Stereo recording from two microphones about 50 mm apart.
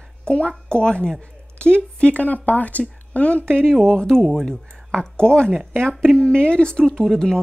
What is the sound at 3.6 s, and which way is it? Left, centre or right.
Speech, centre.